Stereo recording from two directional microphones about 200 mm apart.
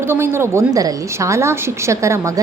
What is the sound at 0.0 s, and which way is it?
A woman's voice, 10° right (ahead or behind).